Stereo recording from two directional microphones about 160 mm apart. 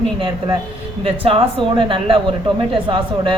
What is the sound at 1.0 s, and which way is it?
A woman's voice, 35° right (ahead or behind).